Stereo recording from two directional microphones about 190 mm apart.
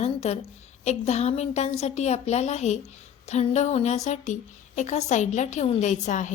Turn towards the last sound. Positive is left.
turn(degrees=40)  # may be behind; listen again after turning